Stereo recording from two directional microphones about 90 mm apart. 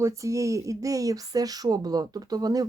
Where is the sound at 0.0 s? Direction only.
35° right (ahead or behind).